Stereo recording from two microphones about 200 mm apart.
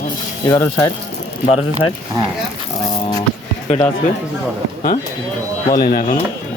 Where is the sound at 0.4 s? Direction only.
15° left (ahead or behind).